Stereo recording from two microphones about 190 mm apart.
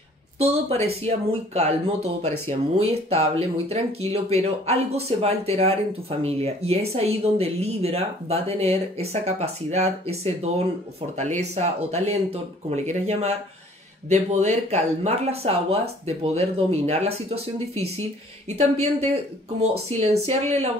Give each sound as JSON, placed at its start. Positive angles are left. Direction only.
{"t": 0.4, "sound": "speech", "side_deg": -30}
{"t": 2.8, "sound": "speech", "side_deg": -35}